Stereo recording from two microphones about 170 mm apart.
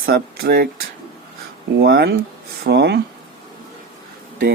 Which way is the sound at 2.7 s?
85° right.